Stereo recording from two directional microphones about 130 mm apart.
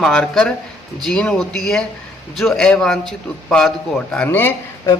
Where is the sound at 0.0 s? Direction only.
5° left (ahead or behind).